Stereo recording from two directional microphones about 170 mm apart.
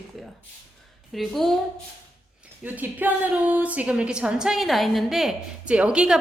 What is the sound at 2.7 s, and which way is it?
A woman's voice, 10° right (ahead or behind).